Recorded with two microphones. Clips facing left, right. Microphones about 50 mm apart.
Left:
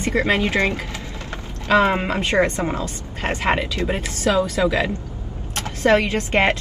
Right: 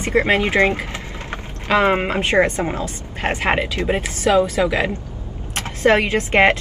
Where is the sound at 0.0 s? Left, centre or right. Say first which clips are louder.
Right 2 dB; right.